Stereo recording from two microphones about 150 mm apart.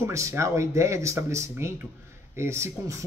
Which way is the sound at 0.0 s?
20° right (ahead or behind).